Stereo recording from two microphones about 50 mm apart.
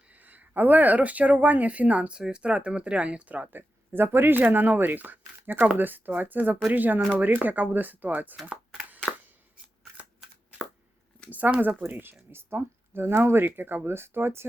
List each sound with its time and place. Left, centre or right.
0.3 s speech: right
2.1 s speech: centre
3.9 s speech: right
11.3 s speech: right
11.8 s speech: right